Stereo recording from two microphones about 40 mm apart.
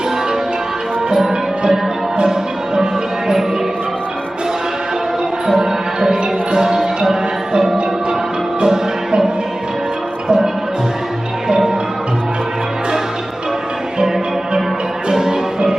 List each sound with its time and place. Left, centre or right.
1.3 s music: right
5.5 s music: centre
10.2 s music: right
15.1 s music: centre